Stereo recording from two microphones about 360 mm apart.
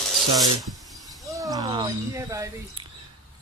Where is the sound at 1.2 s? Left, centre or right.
Centre.